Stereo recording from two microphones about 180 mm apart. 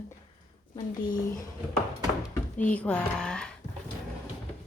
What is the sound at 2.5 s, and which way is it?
Speech, 10° left (ahead or behind).